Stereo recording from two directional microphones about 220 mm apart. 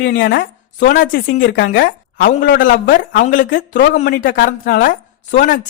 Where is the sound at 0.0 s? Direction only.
50° left (ahead or behind).